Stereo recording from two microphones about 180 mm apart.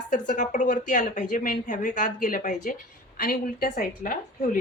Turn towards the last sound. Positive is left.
turn(degrees=50)  # may be behind; listen again after turning